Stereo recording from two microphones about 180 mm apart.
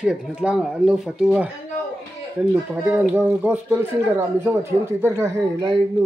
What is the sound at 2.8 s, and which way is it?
Speech, 10° right (ahead or behind).